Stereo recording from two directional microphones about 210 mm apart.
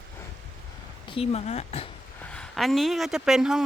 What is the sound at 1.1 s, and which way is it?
Speech, 30° left (ahead or behind).